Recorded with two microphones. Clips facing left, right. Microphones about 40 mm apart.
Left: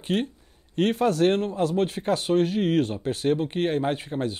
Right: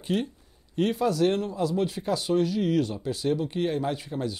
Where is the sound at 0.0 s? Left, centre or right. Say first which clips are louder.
Left 2 dB; left.